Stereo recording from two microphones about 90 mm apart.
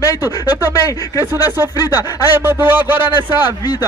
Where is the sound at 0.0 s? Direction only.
40° left (ahead or behind).